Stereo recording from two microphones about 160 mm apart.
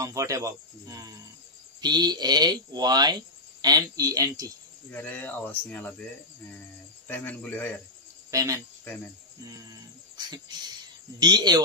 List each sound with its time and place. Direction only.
0.0 s speech: 20° right (ahead or behind)
4.9 s speech: 10° left (ahead or behind)
7.1 s speech: 10° left (ahead or behind)
8.3 s speech: 20° right (ahead or behind)
9.4 s a sound: 25° right (ahead or behind)
11.1 s speech: 25° right (ahead or behind)